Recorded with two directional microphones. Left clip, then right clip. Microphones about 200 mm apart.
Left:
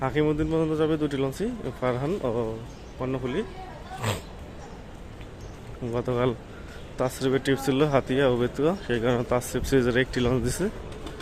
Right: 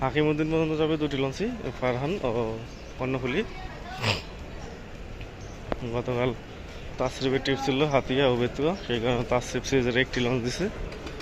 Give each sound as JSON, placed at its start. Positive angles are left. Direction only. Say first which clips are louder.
{"t": 0.0, "sound": "speech", "louder": "even", "side_deg": 20}
{"t": 5.9, "sound": "speech", "louder": "left 3 dB", "side_deg": 25}